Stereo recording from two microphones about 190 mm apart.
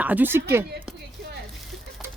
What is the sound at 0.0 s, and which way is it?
Speech, 10° right (ahead or behind).